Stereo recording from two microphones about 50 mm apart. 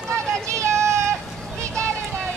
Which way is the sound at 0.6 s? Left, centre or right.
Right.